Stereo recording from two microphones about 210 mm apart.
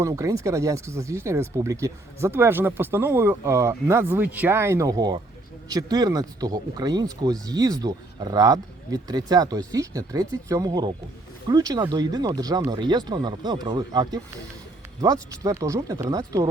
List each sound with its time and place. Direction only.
0.0 s speech: 15° right (ahead or behind)